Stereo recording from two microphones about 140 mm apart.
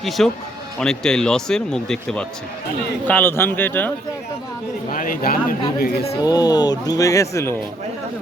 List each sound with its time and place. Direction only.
0.2 s speech: 5° left (ahead or behind)
3.1 s speech: 15° left (ahead or behind)
4.9 s speech: 80° left
6.2 s speech: 30° left (ahead or behind)